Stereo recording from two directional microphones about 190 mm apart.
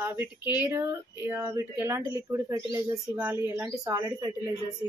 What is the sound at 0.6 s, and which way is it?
Speech, 10° right (ahead or behind).